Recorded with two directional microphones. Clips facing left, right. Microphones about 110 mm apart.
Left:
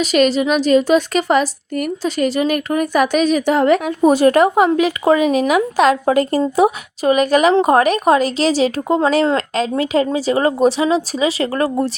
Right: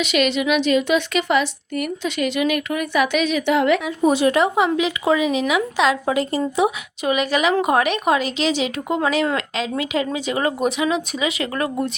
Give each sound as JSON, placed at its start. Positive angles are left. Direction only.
{"t": 0.0, "sound": "a woman's voice", "side_deg": 40}